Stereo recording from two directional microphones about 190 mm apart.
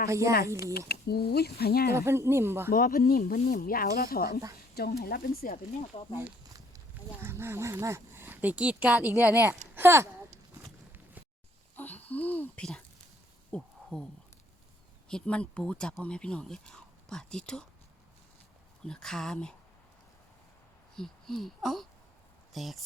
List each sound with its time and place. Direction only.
0.1 s speech: 15° right (ahead or behind)
0.9 s speech: 55° left (ahead or behind)
1.9 s speech: 15° right (ahead or behind)
2.6 s speech: 50° left (ahead or behind)
5.9 s speech: 35° left (ahead or behind)
7.2 s speech: 10° right (ahead or behind)
11.8 s speech: 10° left (ahead or behind)
13.5 s a sound: 5° left (ahead or behind)
15.1 s speech: 5° left (ahead or behind)
18.9 s speech: 5° left (ahead or behind)
20.9 s speech: centre (ahead or behind)